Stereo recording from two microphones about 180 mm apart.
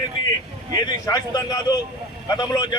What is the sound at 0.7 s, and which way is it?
A man's voice, 20° left (ahead or behind).